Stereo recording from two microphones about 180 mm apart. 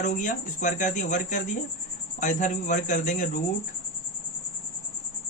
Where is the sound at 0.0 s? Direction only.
45° left (ahead or behind).